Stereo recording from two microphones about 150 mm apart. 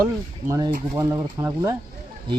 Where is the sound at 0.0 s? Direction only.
20° right (ahead or behind).